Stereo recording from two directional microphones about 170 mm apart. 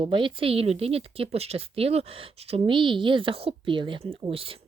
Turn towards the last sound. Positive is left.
turn(degrees=-30)  # may be behind; listen again after turning